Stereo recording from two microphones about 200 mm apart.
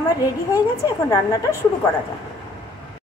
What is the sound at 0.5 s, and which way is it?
Speech, 15° left (ahead or behind).